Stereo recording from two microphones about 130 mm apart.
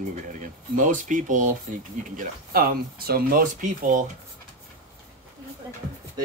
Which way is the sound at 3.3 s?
90° right.